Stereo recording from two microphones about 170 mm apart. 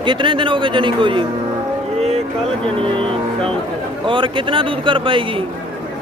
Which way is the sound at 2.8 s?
30° right (ahead or behind).